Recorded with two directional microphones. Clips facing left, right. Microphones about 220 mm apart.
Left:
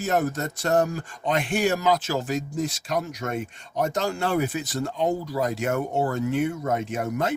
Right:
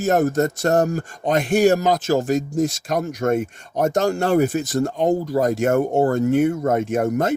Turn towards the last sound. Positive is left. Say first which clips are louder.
# right 7 dB
turn(degrees=-45)  # may be behind; listen again after turning